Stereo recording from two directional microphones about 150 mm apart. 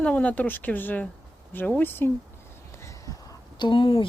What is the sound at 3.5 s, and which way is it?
Speech, 35° left (ahead or behind).